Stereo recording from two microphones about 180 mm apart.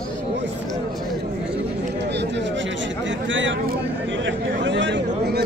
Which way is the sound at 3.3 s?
90° right.